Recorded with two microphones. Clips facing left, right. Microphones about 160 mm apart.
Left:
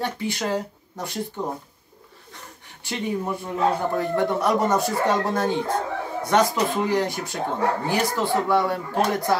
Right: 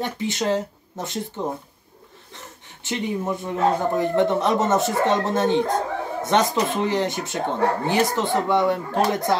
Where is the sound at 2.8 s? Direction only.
20° right (ahead or behind).